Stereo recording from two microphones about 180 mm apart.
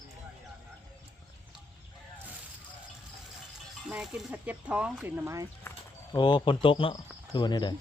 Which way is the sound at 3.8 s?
Centre (ahead or behind).